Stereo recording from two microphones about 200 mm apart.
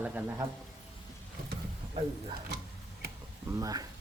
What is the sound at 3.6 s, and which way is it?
Speech, 20° right (ahead or behind).